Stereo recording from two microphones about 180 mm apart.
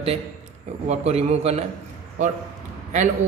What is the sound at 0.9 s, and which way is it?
Speech, 35° right (ahead or behind).